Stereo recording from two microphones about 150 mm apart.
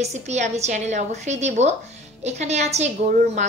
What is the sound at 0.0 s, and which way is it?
A woman's voice, 50° right (ahead or behind).